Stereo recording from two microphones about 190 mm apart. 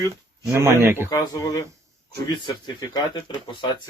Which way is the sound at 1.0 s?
20° left (ahead or behind).